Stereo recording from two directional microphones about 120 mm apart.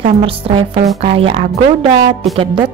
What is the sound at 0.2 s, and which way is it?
Speech, 50° right (ahead or behind).